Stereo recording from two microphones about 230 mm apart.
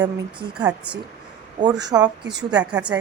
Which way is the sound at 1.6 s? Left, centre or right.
Centre.